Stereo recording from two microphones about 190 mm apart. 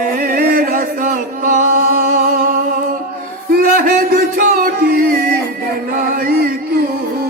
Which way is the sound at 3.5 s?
50° right (ahead or behind).